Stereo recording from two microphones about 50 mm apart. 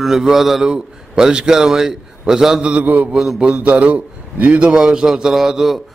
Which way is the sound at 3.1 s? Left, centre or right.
Centre.